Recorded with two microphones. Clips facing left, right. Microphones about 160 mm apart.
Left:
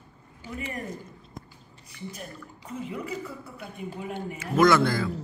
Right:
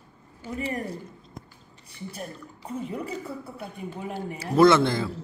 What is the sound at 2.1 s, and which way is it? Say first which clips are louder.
A man's voice: right 3 dB; 35° right (ahead or behind).